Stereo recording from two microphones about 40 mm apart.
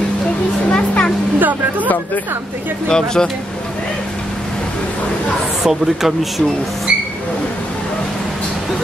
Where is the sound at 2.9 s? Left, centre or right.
Centre.